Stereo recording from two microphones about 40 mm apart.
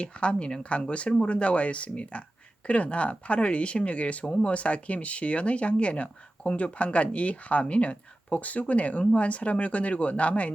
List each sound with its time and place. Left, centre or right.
0.0 s speech: left
4.3 s speech: left
4.5 s speech: left